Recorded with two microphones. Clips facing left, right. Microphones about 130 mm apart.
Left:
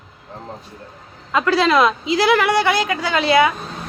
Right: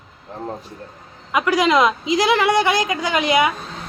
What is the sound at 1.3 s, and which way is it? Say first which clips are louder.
A woman's voice: left 1 dB; 15° right (ahead or behind).